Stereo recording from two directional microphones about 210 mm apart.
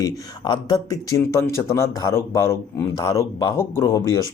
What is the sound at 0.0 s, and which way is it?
Speech, 20° left (ahead or behind).